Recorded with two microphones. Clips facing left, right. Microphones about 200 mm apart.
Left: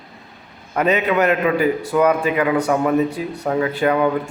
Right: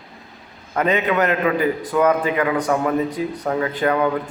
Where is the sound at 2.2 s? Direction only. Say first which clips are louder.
Left 2 dB; 25° left (ahead or behind).